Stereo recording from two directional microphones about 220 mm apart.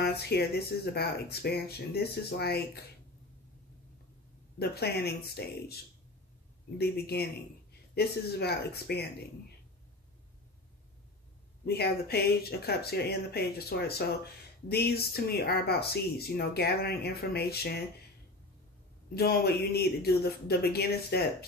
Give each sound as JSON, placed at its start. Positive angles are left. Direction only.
{"t": 0.0, "sound": "speech", "side_deg": 45}
{"t": 4.6, "sound": "speech", "side_deg": 45}
{"t": 6.8, "sound": "speech", "side_deg": 45}
{"t": 11.6, "sound": "speech", "side_deg": 45}
{"t": 19.1, "sound": "speech", "side_deg": 45}